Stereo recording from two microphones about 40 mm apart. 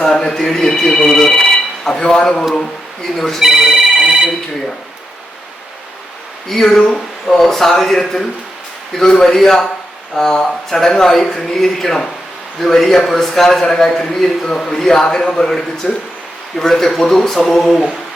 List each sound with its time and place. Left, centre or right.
0.0 s speech: centre
3.4 s speech: centre
6.5 s a man's voice: centre